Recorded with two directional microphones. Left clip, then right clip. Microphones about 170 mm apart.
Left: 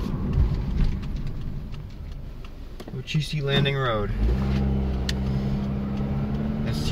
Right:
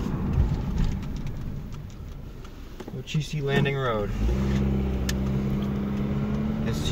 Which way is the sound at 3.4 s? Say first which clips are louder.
Left 1 dB; 55° left (ahead or behind).